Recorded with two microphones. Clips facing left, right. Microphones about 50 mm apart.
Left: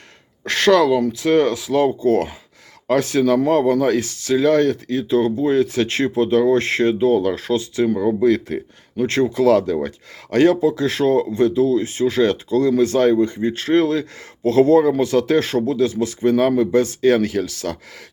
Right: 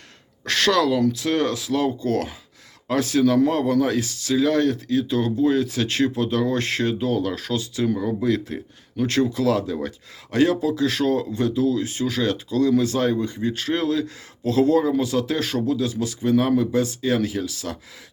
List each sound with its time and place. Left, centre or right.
0.4 s speech: left
8.5 s speech: left